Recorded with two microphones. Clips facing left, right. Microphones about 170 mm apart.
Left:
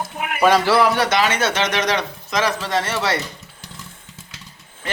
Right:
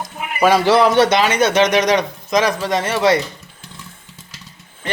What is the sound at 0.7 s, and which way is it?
A man's voice, 20° right (ahead or behind).